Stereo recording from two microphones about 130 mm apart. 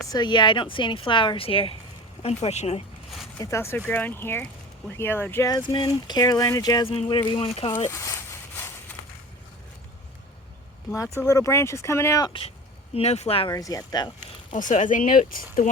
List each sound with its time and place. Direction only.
0.1 s speech: 35° left (ahead or behind)
2.2 s a woman's voice: 55° left (ahead or behind)
3.4 s speech: 20° left (ahead or behind)
5.5 s speech: 35° left (ahead or behind)
6.8 s speech: 45° left (ahead or behind)
7.9 s a sound: 20° left (ahead or behind)
10.9 s speech: 25° left (ahead or behind)
12.3 s speech: 50° left (ahead or behind)
13.5 s speech: 25° left (ahead or behind)
14.5 s speech: 75° left (ahead or behind)